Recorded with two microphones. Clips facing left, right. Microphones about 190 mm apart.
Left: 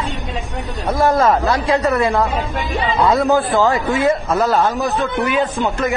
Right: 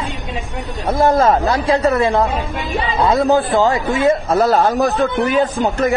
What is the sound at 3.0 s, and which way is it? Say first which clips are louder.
Speech: right 1 dB; 30° right (ahead or behind).